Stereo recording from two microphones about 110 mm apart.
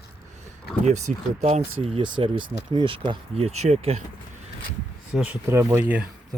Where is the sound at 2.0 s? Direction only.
50° right (ahead or behind).